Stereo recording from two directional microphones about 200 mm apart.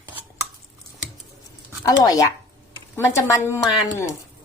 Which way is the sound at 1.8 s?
15° left (ahead or behind).